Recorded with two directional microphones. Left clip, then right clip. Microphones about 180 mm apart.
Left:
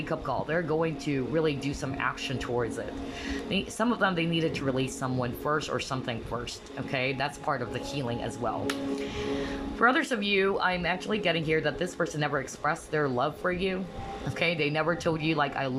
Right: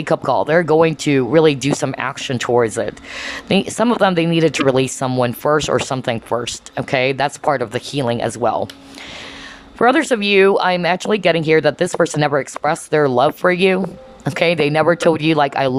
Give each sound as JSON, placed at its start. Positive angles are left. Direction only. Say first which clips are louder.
{"t": 0.0, "sound": "speech", "louder": "right 15 dB", "side_deg": -40}
{"t": 9.7, "sound": "speech", "louder": "right 11 dB", "side_deg": -40}